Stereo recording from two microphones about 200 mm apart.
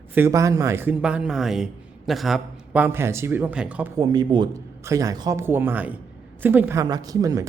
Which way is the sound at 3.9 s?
20° right (ahead or behind).